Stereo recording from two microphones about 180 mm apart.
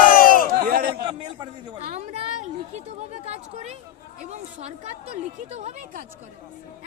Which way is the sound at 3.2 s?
35° right (ahead or behind).